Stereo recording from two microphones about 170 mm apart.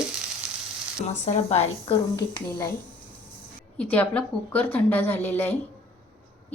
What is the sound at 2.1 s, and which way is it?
Speech, 25° left (ahead or behind).